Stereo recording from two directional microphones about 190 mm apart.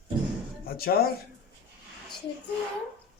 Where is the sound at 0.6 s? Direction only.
50° left (ahead or behind).